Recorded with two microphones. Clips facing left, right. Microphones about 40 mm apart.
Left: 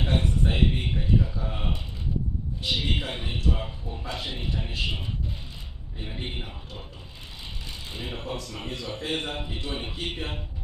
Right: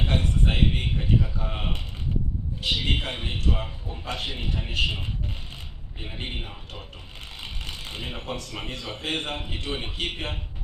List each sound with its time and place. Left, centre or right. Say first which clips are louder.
0.1 s a sound: even; right
1.4 s speech: right 1 dB; right
2.6 s a man's voice: right 2 dB; right
6.1 s a man's voice: right 2 dB; right
7.4 s mechanisms: right 3 dB; right
8.3 s a man's voice: right 1 dB; right